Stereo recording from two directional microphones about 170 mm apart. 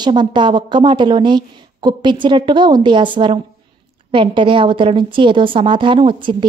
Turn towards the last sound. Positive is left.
turn(degrees=-30)  # may be behind; listen again after turning